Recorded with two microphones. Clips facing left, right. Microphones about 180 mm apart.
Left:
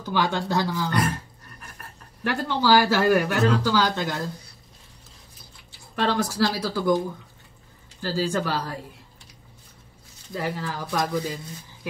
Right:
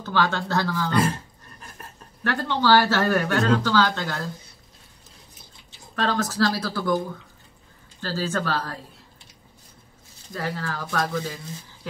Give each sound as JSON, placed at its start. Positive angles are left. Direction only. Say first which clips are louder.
{"t": 0.0, "sound": "speech", "louder": "even", "side_deg": 15}
{"t": 0.8, "sound": "speech", "louder": "right 2 dB", "side_deg": -25}
{"t": 2.2, "sound": "speech", "louder": "even", "side_deg": 10}
{"t": 5.9, "sound": "speech", "louder": "even", "side_deg": 10}
{"t": 8.0, "sound": "speech", "louder": "left 2 dB", "side_deg": 15}
{"t": 10.3, "sound": "speech", "louder": "left 1 dB", "side_deg": 15}